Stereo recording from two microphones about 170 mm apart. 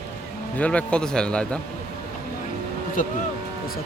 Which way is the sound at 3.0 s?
55° left (ahead or behind).